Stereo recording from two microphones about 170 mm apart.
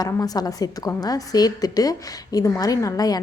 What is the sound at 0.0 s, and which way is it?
A woman's voice, 20° left (ahead or behind).